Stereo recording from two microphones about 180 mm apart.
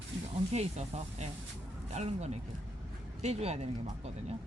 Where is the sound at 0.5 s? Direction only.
35° right (ahead or behind).